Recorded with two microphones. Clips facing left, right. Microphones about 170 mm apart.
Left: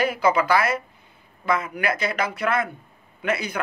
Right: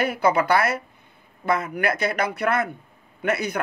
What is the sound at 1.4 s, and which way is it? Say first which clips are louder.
A man's voice: right 1 dB; 60° right (ahead or behind).